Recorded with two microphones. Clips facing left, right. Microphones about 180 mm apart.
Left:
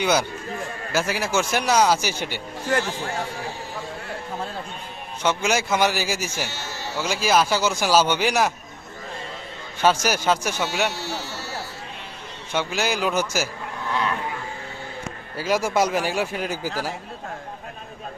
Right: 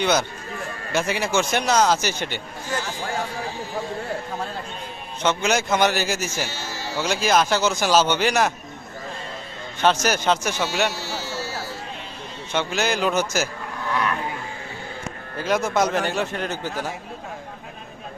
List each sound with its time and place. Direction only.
0.0 s a man's voice: 10° left (ahead or behind)
5.2 s a man's voice: 10° left (ahead or behind)
9.8 s a man's voice: 10° left (ahead or behind)
10.9 s a sound: 65° left (ahead or behind)
12.5 s a man's voice: 10° left (ahead or behind)
15.4 s a man's voice: 5° left (ahead or behind)